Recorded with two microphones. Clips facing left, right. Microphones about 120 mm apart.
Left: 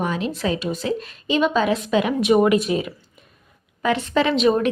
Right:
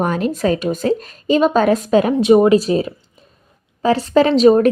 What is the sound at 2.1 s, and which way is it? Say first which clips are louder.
A woman's voice: right 5 dB; 30° right (ahead or behind).